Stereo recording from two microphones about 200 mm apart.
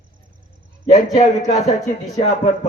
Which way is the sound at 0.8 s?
30° left (ahead or behind).